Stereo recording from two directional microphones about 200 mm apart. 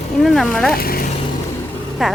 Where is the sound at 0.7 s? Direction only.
50° left (ahead or behind).